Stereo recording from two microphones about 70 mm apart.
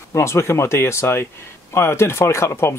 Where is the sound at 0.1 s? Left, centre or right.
Left.